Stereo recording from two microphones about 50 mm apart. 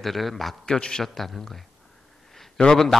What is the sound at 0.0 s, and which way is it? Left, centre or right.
Speech, centre.